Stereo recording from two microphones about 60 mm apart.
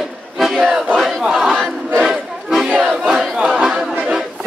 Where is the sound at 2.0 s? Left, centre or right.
Centre.